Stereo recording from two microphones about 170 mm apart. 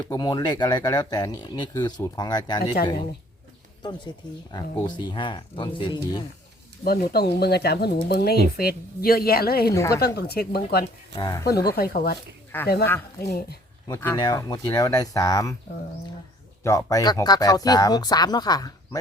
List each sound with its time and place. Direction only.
0.1 s speech: 20° left (ahead or behind)
4.5 s speech: 25° left (ahead or behind)
6.8 s a woman's voice: 65° left (ahead or behind)
9.7 s speech: 15° left (ahead or behind)
10.2 s speech: 65° left (ahead or behind)
11.1 s speech: 25° left (ahead or behind)
11.8 s a woman's voice: 65° left (ahead or behind)
12.5 s speech: 10° left (ahead or behind)
13.8 s speech: 20° left (ahead or behind)
16.6 s speech: 20° left (ahead or behind)